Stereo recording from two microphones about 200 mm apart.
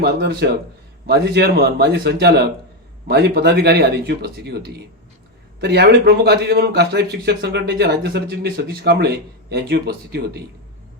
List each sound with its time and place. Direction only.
0.0 s a man's voice: 55° right (ahead or behind)